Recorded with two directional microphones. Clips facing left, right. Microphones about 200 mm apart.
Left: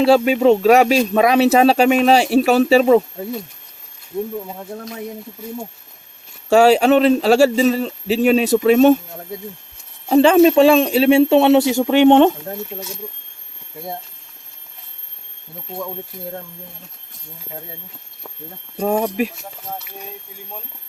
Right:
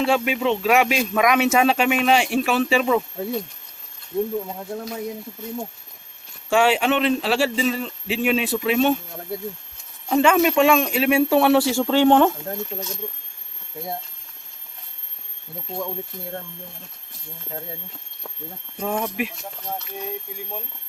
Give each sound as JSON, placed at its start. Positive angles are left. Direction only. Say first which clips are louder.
{"t": 0.0, "sound": "a man's voice", "louder": "left 8 dB", "side_deg": 35}
{"t": 4.4, "sound": "speech", "louder": "even", "side_deg": 0}
{"t": 6.5, "sound": "a man's voice", "louder": "left 7 dB", "side_deg": 40}
{"t": 10.1, "sound": "speech", "louder": "left 7 dB", "side_deg": 30}
{"t": 18.8, "sound": "a man's voice", "louder": "left 7 dB", "side_deg": 35}
{"t": 19.4, "sound": "speech", "louder": "even", "side_deg": 0}